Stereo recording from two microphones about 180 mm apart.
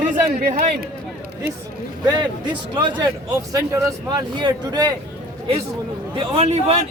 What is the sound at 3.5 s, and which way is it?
Speech, 20° right (ahead or behind).